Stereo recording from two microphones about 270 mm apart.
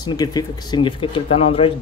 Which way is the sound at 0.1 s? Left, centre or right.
Centre.